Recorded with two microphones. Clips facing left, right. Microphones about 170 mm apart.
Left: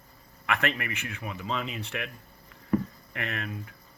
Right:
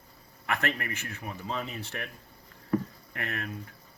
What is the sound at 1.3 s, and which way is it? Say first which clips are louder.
Speech: left 2 dB; 90° left.